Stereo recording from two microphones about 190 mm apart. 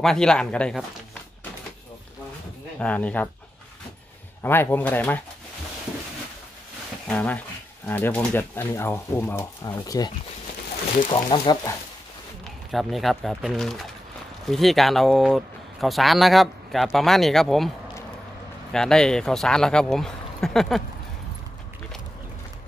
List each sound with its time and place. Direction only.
0.0 s speech: 5° left (ahead or behind)
2.8 s speech: 5° left (ahead or behind)
4.4 s speech: 10° left (ahead or behind)
7.1 s speech: 5° left (ahead or behind)
12.7 s speech: centre (ahead or behind)